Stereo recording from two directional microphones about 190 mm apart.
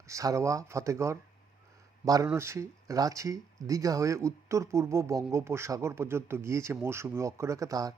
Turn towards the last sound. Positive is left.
turn(degrees=-20)  # may be behind; listen again after turning